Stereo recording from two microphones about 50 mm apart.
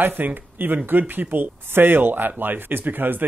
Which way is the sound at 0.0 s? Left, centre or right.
Right.